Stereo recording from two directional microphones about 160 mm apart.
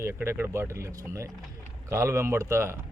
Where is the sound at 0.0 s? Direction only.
15° right (ahead or behind).